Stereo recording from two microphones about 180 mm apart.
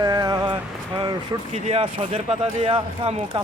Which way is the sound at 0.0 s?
20° right (ahead or behind).